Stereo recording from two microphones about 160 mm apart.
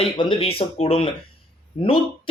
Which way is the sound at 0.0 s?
35° left (ahead or behind).